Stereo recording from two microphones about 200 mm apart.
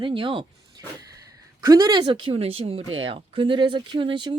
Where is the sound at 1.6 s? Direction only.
20° right (ahead or behind).